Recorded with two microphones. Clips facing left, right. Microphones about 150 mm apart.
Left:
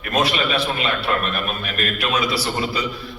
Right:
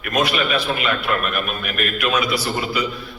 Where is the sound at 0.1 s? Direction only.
30° left (ahead or behind).